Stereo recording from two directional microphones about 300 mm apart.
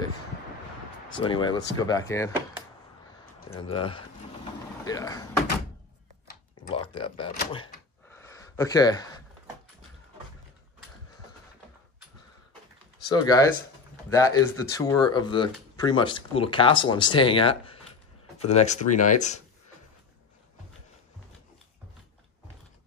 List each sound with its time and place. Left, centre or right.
1.2 s speech: centre
3.4 s speech: centre
6.7 s speech: centre
13.1 s speech: centre